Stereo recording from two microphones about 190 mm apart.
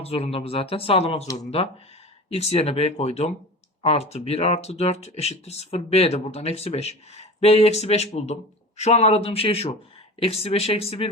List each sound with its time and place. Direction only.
0.0 s speech: 30° left (ahead or behind)